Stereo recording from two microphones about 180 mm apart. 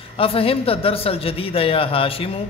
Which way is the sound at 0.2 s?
30° left (ahead or behind).